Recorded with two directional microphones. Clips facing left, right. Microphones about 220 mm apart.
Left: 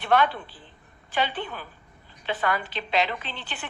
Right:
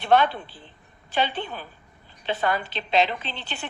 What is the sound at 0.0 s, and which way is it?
A woman's voice, 25° right (ahead or behind).